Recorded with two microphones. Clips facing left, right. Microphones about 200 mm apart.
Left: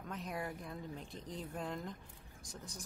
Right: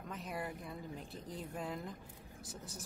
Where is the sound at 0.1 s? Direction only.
Centre (ahead or behind).